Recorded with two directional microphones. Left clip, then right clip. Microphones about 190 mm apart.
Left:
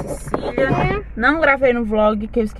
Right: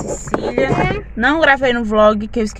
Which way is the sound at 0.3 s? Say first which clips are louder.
Right 3 dB; 30° right (ahead or behind).